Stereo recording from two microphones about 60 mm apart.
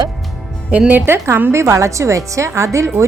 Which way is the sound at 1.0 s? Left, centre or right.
Right.